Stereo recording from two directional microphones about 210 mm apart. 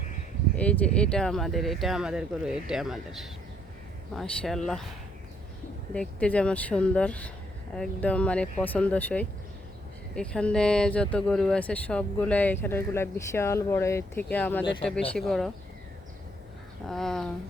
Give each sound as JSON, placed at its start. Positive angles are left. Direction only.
{"t": 0.5, "sound": "speech", "side_deg": 5}
{"t": 5.9, "sound": "speech", "side_deg": 5}
{"t": 14.6, "sound": "speech", "side_deg": 25}
{"t": 15.1, "sound": "speech", "side_deg": 0}
{"t": 16.9, "sound": "speech", "side_deg": 0}